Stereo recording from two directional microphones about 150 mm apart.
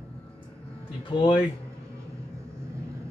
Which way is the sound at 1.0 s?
35° left (ahead or behind).